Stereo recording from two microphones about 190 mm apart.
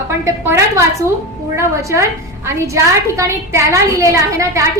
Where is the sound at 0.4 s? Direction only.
15° right (ahead or behind).